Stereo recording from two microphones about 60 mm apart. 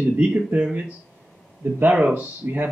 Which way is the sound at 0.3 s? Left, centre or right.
Right.